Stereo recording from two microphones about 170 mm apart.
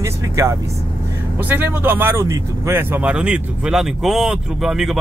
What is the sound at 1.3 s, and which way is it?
Speech, 10° right (ahead or behind).